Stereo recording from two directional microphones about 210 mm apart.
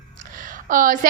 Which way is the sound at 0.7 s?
40° right (ahead or behind).